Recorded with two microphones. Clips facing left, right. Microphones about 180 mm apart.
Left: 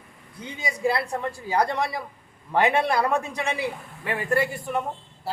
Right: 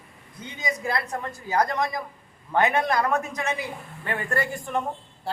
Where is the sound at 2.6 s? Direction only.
10° left (ahead or behind).